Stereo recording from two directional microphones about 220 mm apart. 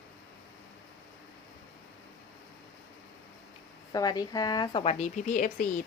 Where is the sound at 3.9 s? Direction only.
15° left (ahead or behind).